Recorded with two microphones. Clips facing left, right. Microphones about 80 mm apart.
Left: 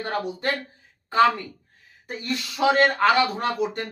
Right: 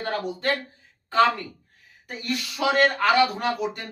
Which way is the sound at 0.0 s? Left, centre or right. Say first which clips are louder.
Even; centre.